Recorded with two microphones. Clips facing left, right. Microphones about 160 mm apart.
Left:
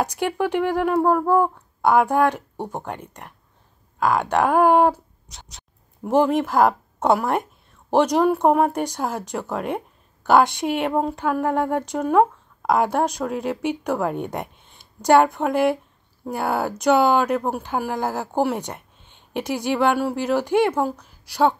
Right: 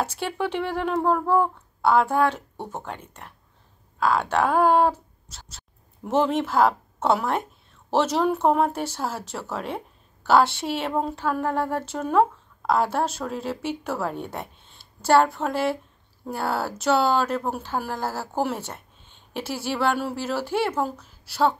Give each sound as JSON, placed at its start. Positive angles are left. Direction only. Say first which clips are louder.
{"t": 0.0, "sound": "speech", "louder": "left 4 dB", "side_deg": 15}